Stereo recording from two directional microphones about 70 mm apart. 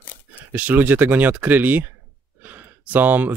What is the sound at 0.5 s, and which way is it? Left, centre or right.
Speech, right.